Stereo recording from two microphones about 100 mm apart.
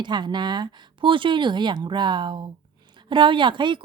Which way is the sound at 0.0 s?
50° right (ahead or behind).